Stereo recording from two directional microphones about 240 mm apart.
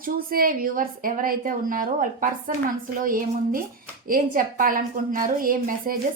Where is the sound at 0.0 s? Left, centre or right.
Right.